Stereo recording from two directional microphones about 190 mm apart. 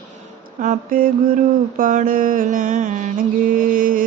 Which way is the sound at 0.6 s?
45° right (ahead or behind).